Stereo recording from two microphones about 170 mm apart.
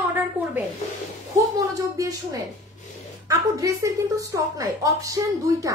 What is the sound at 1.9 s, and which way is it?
A woman's voice, 20° right (ahead or behind).